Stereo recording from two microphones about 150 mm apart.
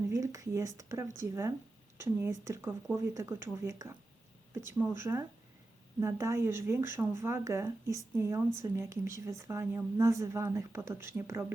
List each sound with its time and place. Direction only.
0.1 s speech: 20° right (ahead or behind)